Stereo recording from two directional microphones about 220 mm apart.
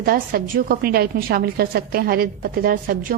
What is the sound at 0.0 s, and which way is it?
A woman's voice, 40° right (ahead or behind).